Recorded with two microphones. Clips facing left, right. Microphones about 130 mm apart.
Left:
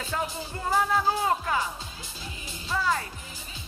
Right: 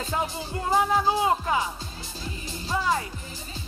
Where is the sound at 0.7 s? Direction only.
15° right (ahead or behind).